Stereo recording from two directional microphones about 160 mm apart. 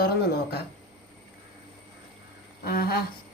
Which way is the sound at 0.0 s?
75° left (ahead or behind).